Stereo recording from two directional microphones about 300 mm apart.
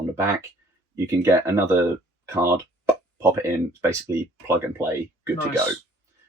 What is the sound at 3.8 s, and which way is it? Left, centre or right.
Speech, centre.